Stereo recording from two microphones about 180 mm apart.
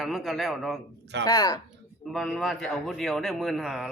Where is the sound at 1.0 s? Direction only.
75° right (ahead or behind).